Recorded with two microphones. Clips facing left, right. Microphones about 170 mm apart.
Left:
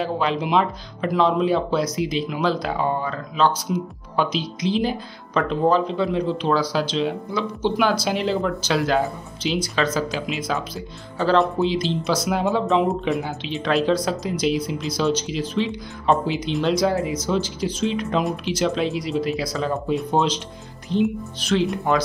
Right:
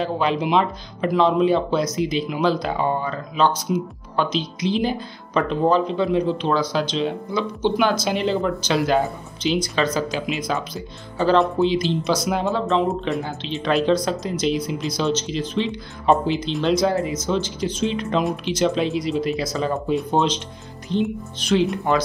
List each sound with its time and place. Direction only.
0.0 s speech: centre (ahead or behind)
12.4 s speech: 15° left (ahead or behind)
13.1 s speech: centre (ahead or behind)